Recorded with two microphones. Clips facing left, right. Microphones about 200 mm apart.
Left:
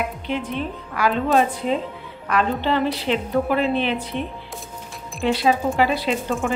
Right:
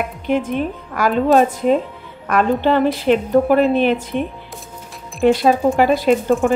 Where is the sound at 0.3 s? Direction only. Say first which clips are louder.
Right 10 dB; 45° right (ahead or behind).